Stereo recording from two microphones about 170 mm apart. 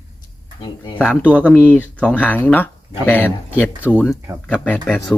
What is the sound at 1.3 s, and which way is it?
Speech, 5° left (ahead or behind).